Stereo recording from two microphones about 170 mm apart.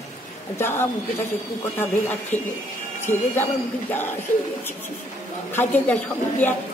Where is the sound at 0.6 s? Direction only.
15° left (ahead or behind).